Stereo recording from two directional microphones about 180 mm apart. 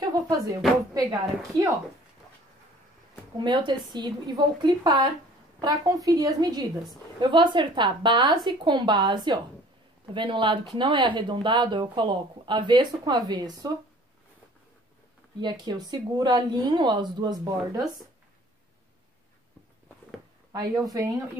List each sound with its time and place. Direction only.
0.0 s speech: 20° right (ahead or behind)
3.3 s a woman's voice: 25° right (ahead or behind)
15.4 s a woman's voice: 25° right (ahead or behind)
20.5 s a woman's voice: 20° right (ahead or behind)